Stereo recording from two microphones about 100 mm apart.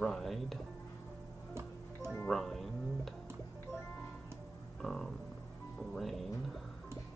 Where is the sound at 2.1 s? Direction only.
5° left (ahead or behind).